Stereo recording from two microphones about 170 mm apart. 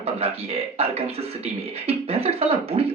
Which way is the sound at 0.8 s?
35° right (ahead or behind).